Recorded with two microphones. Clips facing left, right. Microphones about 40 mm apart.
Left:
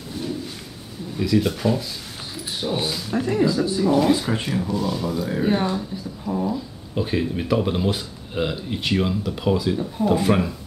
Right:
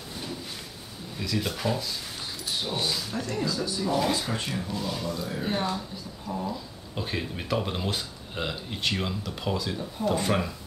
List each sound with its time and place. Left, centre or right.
1.2 s speech: centre
2.7 s speech: centre
5.3 s speech: centre